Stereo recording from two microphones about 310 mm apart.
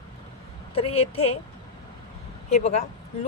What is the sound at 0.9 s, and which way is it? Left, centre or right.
Speech, centre.